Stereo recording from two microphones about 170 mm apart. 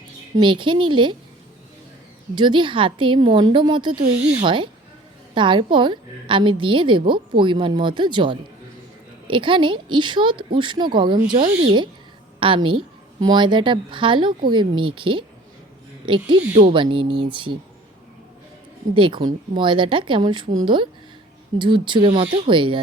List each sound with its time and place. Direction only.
0.3 s a woman's voice: 30° right (ahead or behind)
2.3 s a woman's voice: 30° right (ahead or behind)
18.9 s a woman's voice: 30° right (ahead or behind)
21.6 s a woman's voice: 30° right (ahead or behind)